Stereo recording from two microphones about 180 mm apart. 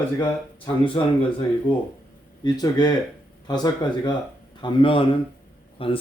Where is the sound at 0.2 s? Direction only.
30° left (ahead or behind).